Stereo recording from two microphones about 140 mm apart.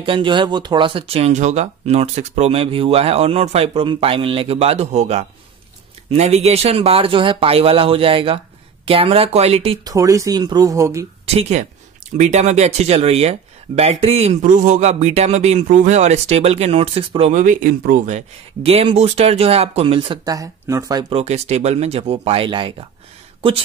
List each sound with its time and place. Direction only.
0.0 s speech: 35° right (ahead or behind)
9.8 s speech: 25° right (ahead or behind)
11.2 s speech: 50° right (ahead or behind)
17.3 s speech: 65° right (ahead or behind)
18.6 s speech: 45° right (ahead or behind); by 21.0 s 20° right (ahead or behind)
21.1 s speech: 50° right (ahead or behind)